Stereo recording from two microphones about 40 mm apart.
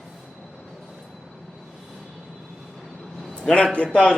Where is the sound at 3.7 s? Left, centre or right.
Left.